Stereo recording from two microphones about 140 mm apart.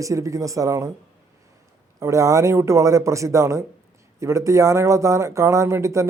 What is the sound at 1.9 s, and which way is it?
A man's voice, 20° right (ahead or behind).